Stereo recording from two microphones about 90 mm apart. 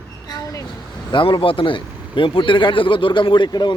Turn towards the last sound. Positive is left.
turn(degrees=60)  # may be behind; listen again after turning